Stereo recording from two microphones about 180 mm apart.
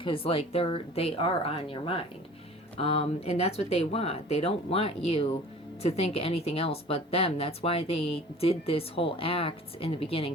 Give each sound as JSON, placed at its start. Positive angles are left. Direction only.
{"t": 0.0, "sound": "a woman's voice", "side_deg": 30}